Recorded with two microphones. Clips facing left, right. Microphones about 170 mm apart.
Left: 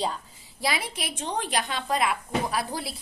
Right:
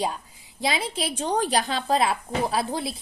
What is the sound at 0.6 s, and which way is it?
Speech, 25° right (ahead or behind).